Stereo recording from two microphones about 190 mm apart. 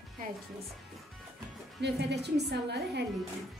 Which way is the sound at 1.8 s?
65° right (ahead or behind).